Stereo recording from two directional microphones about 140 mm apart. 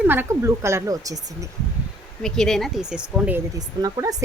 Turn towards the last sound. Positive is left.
turn(degrees=-25)  # may be behind; listen again after turning